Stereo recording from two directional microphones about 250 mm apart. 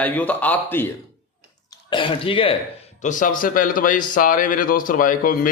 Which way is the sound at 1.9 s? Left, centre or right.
Left.